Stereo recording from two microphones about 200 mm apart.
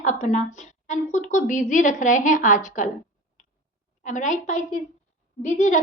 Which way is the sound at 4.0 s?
40° left (ahead or behind).